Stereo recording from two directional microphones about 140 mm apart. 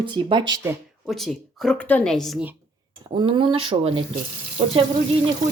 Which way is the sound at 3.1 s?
35° right (ahead or behind).